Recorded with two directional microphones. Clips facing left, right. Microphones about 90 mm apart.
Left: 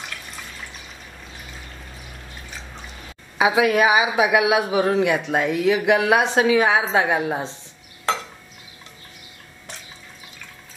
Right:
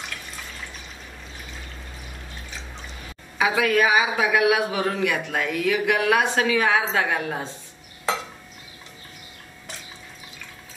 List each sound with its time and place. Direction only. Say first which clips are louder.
3.3 s a man's voice: left 3 dB; 20° left (ahead or behind)